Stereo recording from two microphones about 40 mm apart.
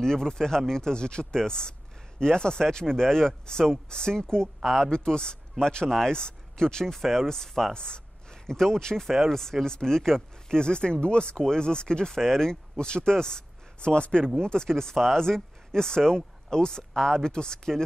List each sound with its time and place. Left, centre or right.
0.0 s speech: centre
6.9 s speech: centre
7.7 s speech: left
9.0 s speech: centre
10.6 s speech: left